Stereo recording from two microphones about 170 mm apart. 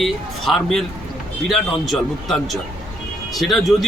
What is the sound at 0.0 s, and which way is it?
Speech, centre (ahead or behind).